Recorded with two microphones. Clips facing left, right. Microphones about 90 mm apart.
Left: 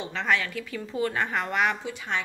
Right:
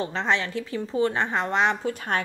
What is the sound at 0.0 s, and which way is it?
A woman's voice, 30° right (ahead or behind).